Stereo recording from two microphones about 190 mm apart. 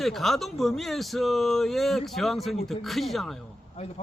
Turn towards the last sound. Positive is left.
turn(degrees=30)  # may be behind; listen again after turning